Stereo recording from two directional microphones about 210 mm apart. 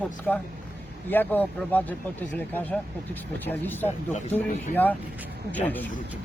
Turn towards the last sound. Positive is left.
turn(degrees=10)  # may be behind; listen again after turning